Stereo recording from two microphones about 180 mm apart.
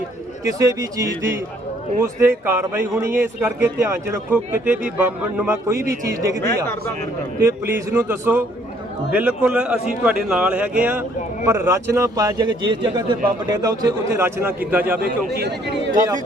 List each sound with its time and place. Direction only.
0.4 s a man's voice: 20° right (ahead or behind)
7.4 s a man's voice: 15° right (ahead or behind)
14.9 s speech: 65° right (ahead or behind)